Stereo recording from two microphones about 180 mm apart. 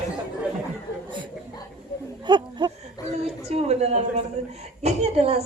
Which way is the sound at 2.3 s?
25° right (ahead or behind).